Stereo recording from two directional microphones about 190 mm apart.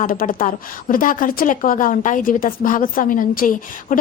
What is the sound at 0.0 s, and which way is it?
A woman's voice, 50° left (ahead or behind).